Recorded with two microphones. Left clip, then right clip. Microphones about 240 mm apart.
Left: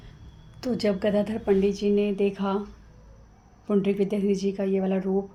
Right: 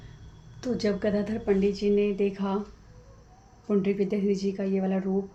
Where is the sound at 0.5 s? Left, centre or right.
Left.